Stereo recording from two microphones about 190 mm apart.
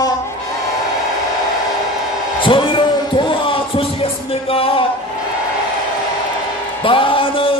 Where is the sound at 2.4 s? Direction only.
25° left (ahead or behind).